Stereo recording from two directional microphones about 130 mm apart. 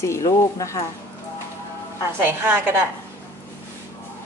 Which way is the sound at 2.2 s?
15° right (ahead or behind).